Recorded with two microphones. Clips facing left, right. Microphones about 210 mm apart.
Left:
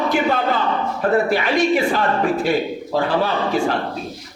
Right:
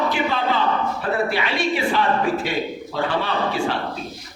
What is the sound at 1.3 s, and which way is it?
Speech, 50° left (ahead or behind).